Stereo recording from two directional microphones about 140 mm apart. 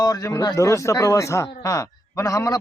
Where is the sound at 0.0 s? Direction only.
25° left (ahead or behind).